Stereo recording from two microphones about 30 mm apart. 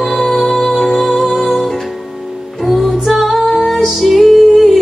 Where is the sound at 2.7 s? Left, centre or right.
Centre.